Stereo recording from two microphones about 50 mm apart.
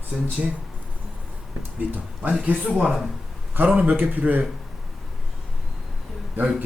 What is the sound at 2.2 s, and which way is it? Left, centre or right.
Speech, right.